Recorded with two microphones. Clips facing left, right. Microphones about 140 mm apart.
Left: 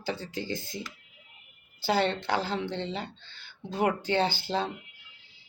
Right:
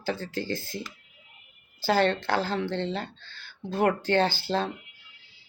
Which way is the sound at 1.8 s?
15° left (ahead or behind).